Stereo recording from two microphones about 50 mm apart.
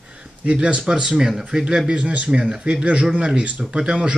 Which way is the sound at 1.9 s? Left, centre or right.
Right.